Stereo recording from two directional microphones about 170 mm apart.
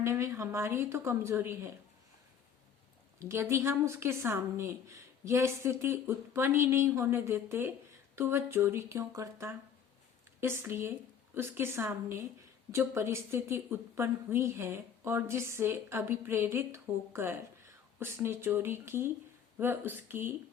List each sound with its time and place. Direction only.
0.0 s speech: 15° right (ahead or behind)
3.2 s speech: 15° right (ahead or behind)